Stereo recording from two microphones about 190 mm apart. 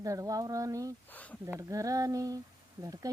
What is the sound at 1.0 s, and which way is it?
Speech, 10° left (ahead or behind).